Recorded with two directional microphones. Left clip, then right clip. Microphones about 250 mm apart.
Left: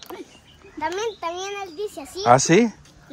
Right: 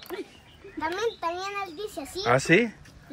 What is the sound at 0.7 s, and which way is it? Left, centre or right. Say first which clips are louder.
A child's voice: left 3 dB; left.